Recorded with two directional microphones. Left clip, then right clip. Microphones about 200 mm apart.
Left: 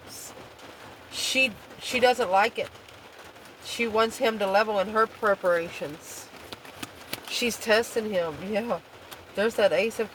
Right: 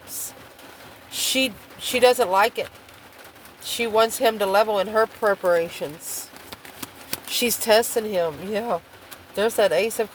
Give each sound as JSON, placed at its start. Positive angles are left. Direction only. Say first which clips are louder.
{"t": 1.1, "sound": "speech", "louder": "right 2 dB", "side_deg": -45}
{"t": 7.3, "sound": "speech", "louder": "right 5 dB", "side_deg": -45}